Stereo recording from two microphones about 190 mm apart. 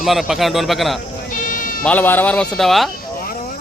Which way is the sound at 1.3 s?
45° left (ahead or behind).